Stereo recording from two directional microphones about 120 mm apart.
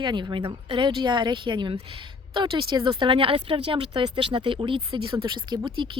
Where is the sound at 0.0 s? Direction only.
40° right (ahead or behind).